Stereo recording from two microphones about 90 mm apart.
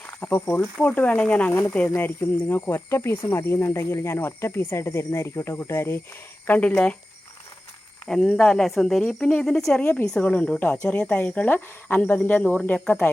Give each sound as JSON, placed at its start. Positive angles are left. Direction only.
{"t": 0.2, "sound": "speech", "side_deg": 15}
{"t": 6.5, "sound": "speech", "side_deg": 15}
{"t": 8.0, "sound": "speech", "side_deg": 5}